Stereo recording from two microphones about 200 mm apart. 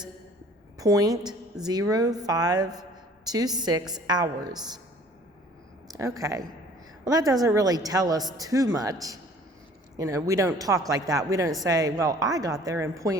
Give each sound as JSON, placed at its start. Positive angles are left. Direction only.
{"t": 0.8, "sound": "a man's voice", "side_deg": -15}
{"t": 5.9, "sound": "a man's voice", "side_deg": -15}